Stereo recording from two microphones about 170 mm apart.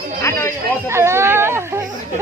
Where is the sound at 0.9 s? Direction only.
15° right (ahead or behind).